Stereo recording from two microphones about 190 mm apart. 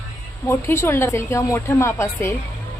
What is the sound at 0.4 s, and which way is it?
A woman's voice, 15° left (ahead or behind).